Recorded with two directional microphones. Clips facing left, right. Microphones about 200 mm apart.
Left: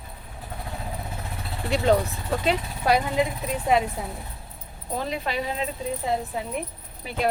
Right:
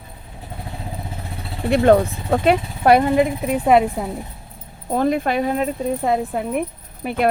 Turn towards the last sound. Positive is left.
turn(degrees=-60)  # may be behind; listen again after turning